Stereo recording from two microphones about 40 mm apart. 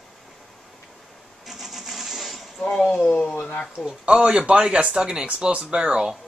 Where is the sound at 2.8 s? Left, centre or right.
Left.